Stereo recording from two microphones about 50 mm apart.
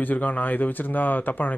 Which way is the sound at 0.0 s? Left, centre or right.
Left.